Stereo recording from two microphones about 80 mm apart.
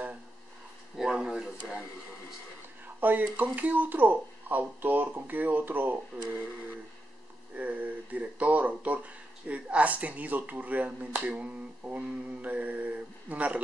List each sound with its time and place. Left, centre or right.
0.9 s a sound: centre
3.0 s speech: right
7.5 s speech: centre